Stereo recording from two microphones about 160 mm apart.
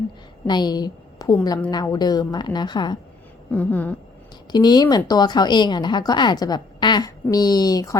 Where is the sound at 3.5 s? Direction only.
10° left (ahead or behind).